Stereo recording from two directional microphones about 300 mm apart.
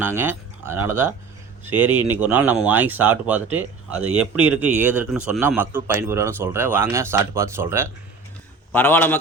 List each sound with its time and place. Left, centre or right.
0.0 s speech: centre
8.7 s a man's voice: centre